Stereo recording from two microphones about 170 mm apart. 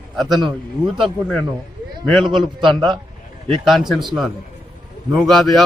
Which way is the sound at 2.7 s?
Centre (ahead or behind).